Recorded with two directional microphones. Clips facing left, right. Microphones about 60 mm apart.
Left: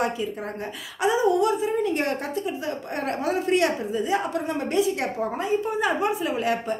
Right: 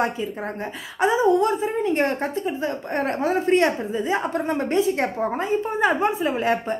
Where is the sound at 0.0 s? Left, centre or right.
Right.